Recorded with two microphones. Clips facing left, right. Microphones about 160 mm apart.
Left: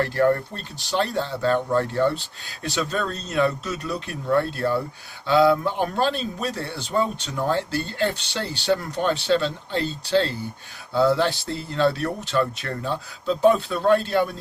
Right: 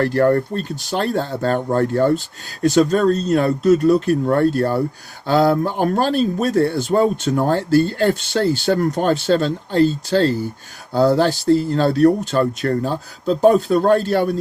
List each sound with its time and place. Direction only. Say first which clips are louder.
0.0 s speech: right 5 dB; 45° right (ahead or behind)